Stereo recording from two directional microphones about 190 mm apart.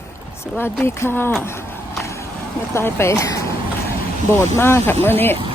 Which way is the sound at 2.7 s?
15° left (ahead or behind).